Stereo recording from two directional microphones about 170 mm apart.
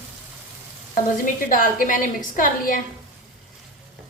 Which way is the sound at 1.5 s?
55° left (ahead or behind).